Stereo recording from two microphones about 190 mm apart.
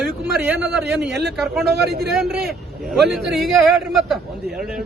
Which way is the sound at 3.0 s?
60° right (ahead or behind).